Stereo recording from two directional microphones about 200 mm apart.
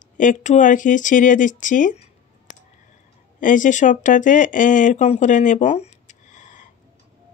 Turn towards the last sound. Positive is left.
turn(degrees=40)  # may be behind; listen again after turning